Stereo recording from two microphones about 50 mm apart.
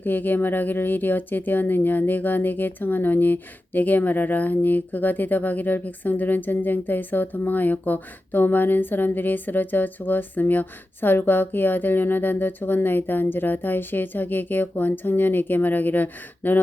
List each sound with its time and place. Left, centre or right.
0.0 s speech: left